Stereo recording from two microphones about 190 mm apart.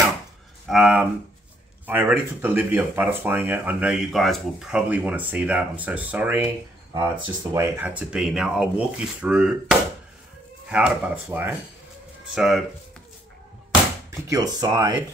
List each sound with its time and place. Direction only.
0.7 s speech: 5° right (ahead or behind)
14.1 s speech: 15° right (ahead or behind)